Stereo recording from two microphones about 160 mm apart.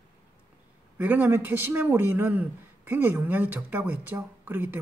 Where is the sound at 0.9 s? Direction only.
10° right (ahead or behind).